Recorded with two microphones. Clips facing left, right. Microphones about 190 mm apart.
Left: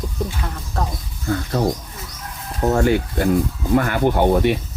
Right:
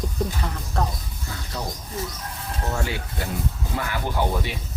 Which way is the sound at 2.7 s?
55° left (ahead or behind).